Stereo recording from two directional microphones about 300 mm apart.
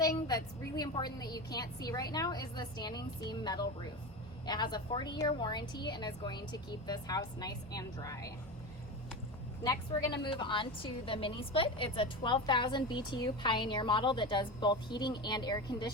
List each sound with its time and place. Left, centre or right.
0.0 s a woman's voice: centre
10.2 s a woman's voice: centre